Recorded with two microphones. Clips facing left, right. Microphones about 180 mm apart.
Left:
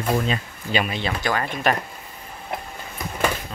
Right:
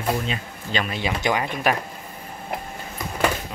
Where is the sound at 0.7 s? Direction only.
10° left (ahead or behind).